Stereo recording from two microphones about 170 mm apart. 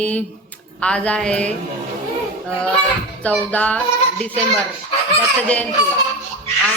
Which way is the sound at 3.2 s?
10° left (ahead or behind).